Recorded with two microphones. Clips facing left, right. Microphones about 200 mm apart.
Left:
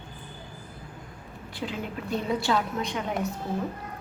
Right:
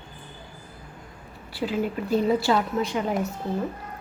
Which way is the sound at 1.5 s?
5° right (ahead or behind).